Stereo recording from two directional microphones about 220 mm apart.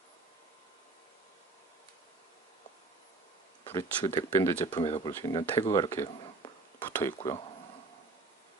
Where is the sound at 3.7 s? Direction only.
10° left (ahead or behind).